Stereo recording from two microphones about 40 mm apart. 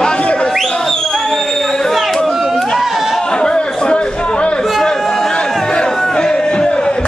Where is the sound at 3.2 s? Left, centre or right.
Left.